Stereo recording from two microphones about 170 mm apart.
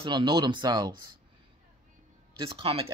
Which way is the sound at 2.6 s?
35° right (ahead or behind).